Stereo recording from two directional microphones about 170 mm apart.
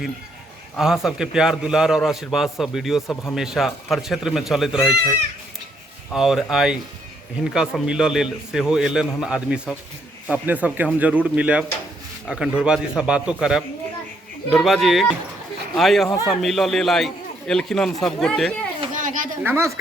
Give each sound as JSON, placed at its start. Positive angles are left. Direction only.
{"t": 0.8, "sound": "a man's voice", "side_deg": -5}
{"t": 6.1, "sound": "a man's voice", "side_deg": 0}
{"t": 18.9, "sound": "speech", "side_deg": -50}
{"t": 19.4, "sound": "speech", "side_deg": -15}